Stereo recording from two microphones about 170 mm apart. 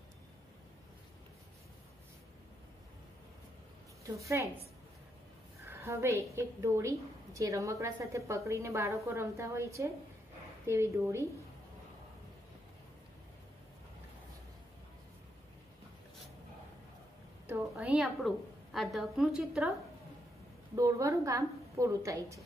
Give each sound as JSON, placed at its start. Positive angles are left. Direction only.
{"t": 4.0, "sound": "a woman's voice", "side_deg": -15}
{"t": 5.7, "sound": "a woman's voice", "side_deg": -15}
{"t": 17.5, "sound": "a woman's voice", "side_deg": -5}
{"t": 20.7, "sound": "a woman's voice", "side_deg": -20}